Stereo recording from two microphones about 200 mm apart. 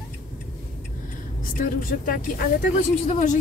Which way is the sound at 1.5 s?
45° left (ahead or behind).